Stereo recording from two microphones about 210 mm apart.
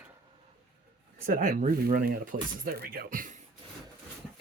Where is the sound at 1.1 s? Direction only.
40° right (ahead or behind).